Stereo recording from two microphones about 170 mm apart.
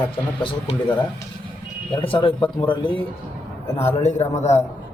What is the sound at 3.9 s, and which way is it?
Speech, 40° left (ahead or behind).